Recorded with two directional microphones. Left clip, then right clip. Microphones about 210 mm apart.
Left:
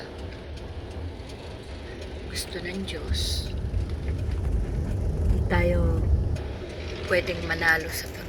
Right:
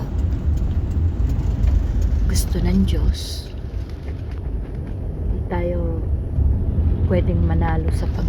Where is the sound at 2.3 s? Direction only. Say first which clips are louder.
Right 7 dB; 10° right (ahead or behind).